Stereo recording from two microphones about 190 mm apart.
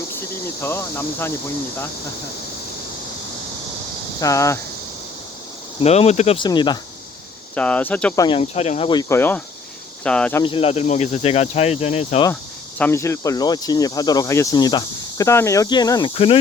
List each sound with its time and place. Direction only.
0.6 s speech: 10° left (ahead or behind)
4.2 s speech: 15° left (ahead or behind)
5.8 s speech: 35° left (ahead or behind)
7.5 s speech: 5° left (ahead or behind)
8.1 s speech: 20° left (ahead or behind)
8.4 s speech: 35° left (ahead or behind)
8.9 s speech: 15° left (ahead or behind)
10.4 s speech: 30° left (ahead or behind)
12.8 s speech: 15° left (ahead or behind); by 16.4 s 30° left (ahead or behind)